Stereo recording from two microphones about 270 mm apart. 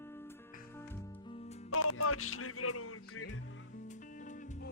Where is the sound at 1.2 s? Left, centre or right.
Left.